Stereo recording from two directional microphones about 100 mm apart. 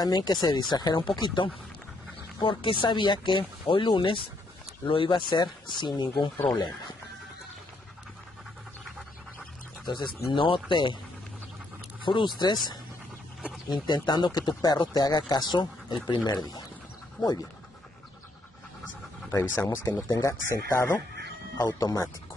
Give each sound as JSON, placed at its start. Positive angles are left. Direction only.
{"t": 0.0, "sound": "speech", "side_deg": 45}
{"t": 9.8, "sound": "speech", "side_deg": 50}
{"t": 12.0, "sound": "speech", "side_deg": 55}
{"t": 13.7, "sound": "speech", "side_deg": 45}
{"t": 19.3, "sound": "speech", "side_deg": 20}
{"t": 20.1, "sound": "speech", "side_deg": 35}
{"t": 21.5, "sound": "speech", "side_deg": 40}